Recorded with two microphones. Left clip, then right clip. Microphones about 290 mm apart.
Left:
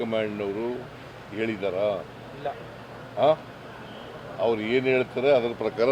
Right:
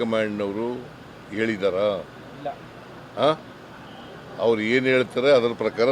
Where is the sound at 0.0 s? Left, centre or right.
Right.